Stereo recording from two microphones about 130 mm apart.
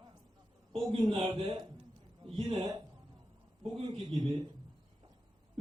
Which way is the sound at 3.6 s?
50° right (ahead or behind).